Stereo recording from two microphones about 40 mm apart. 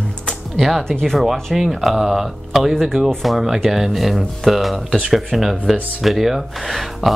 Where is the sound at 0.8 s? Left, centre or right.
Centre.